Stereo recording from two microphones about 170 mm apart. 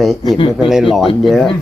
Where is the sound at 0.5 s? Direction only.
5° right (ahead or behind).